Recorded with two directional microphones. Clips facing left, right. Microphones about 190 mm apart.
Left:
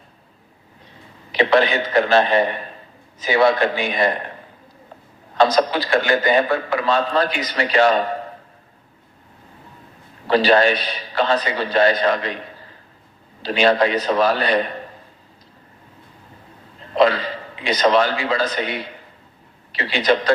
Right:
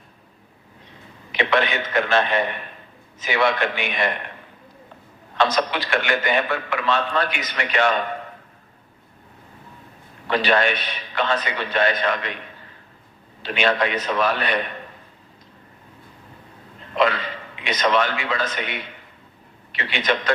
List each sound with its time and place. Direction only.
1.3 s a man's voice: 35° left (ahead or behind)
5.4 s a man's voice: 35° left (ahead or behind)
10.2 s a man's voice: 35° left (ahead or behind)
16.9 s a man's voice: 35° left (ahead or behind)